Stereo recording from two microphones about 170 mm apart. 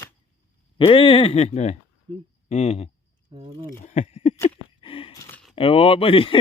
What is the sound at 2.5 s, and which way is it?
Speech, 40° left (ahead or behind).